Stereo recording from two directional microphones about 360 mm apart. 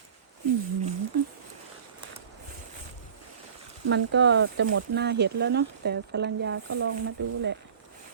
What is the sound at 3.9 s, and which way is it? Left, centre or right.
Speech, right.